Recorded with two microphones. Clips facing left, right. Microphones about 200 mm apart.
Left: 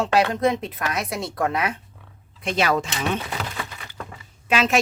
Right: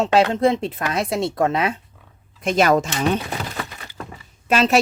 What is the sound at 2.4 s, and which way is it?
Speech, 45° right (ahead or behind).